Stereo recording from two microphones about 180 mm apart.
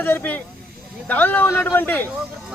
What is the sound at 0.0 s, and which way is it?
Speech, 10° left (ahead or behind).